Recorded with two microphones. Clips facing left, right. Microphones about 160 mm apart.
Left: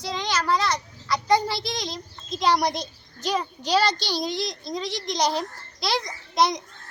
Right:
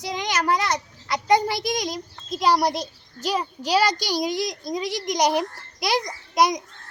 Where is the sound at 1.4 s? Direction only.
15° right (ahead or behind).